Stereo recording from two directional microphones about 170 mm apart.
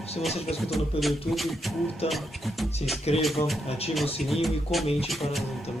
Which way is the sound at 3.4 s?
40° left (ahead or behind).